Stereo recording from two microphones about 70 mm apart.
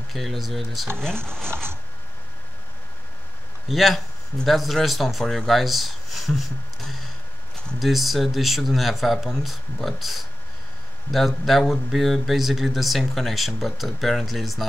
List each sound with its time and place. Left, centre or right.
0.1 s speech: centre
0.9 s speech: centre
3.6 s speech: centre